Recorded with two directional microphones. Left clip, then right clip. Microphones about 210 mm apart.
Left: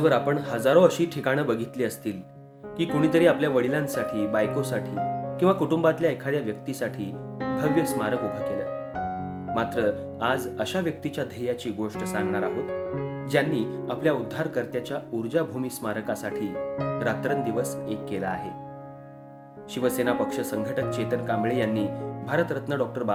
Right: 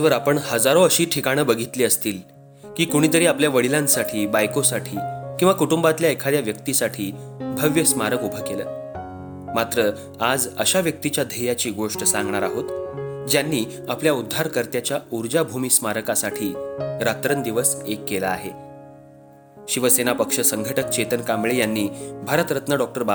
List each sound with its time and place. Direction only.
0.0 s speech: 40° right (ahead or behind)
19.7 s speech: 40° right (ahead or behind)